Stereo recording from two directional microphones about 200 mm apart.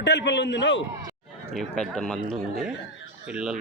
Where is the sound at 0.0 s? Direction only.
60° left (ahead or behind).